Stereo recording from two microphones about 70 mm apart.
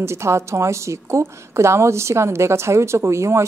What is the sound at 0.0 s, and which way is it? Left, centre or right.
A woman's voice, right.